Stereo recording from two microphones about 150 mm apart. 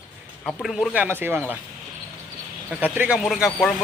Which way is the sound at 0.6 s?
Centre (ahead or behind).